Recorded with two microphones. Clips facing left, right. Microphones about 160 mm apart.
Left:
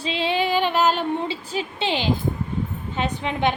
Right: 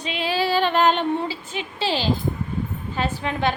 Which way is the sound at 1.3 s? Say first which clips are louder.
Left 3 dB; 35° left (ahead or behind).